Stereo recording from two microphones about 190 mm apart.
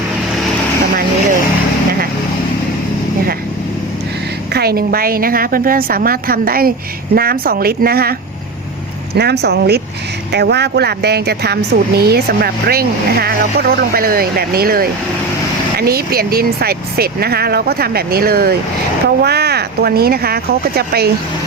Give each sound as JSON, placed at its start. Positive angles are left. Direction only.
{"t": 4.5, "sound": "speech", "side_deg": -55}
{"t": 9.1, "sound": "a woman's voice", "side_deg": -60}